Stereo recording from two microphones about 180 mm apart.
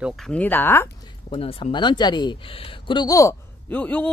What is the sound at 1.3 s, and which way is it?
Speech, 30° left (ahead or behind).